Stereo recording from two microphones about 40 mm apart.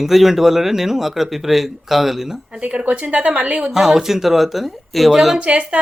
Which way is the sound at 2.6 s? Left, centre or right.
Right.